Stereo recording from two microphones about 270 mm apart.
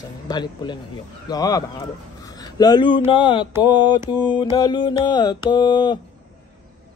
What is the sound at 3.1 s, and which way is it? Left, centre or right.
Mantra, centre.